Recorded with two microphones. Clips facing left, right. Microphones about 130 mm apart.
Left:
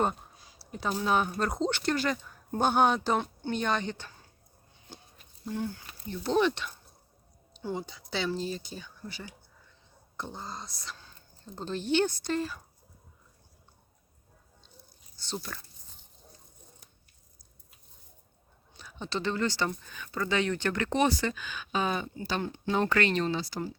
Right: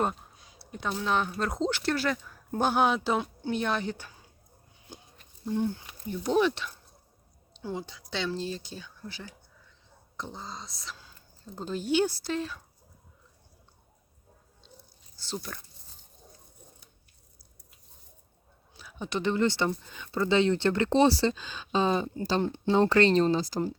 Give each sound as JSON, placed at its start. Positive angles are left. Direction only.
{"t": 0.0, "sound": "speech", "side_deg": 0}
{"t": 5.5, "sound": "speech", "side_deg": -20}
{"t": 15.2, "sound": "speech", "side_deg": 0}
{"t": 18.7, "sound": "speech", "side_deg": -5}